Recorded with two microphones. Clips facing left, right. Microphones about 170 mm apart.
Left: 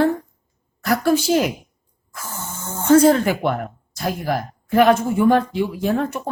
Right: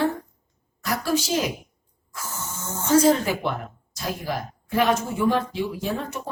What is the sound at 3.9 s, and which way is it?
Speech, 55° left (ahead or behind).